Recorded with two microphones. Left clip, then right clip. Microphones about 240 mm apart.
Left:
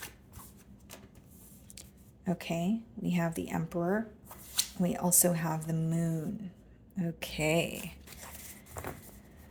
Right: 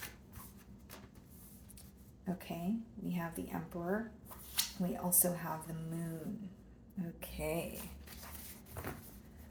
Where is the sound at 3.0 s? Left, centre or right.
Left.